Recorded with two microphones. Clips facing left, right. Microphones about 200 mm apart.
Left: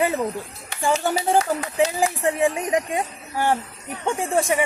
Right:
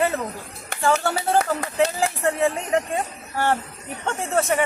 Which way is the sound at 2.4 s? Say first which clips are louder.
Left 1 dB; 15° left (ahead or behind).